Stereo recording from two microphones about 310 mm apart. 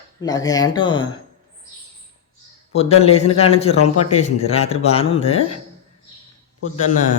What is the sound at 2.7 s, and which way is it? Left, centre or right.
Speech, centre.